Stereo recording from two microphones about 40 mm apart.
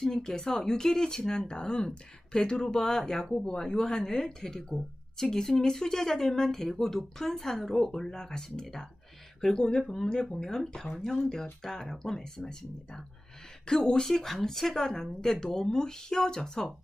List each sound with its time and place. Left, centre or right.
0.0 s speech: centre